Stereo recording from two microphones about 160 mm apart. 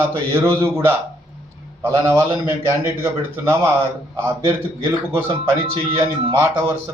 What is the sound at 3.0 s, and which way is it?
Speech, 15° right (ahead or behind).